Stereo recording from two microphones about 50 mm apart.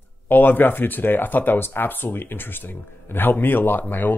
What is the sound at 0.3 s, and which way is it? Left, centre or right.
Speech, left.